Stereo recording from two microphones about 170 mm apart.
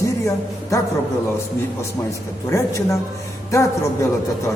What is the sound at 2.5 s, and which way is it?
Speech, 15° left (ahead or behind).